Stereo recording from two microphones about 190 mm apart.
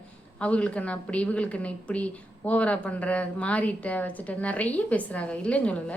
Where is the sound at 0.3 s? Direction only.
5° left (ahead or behind).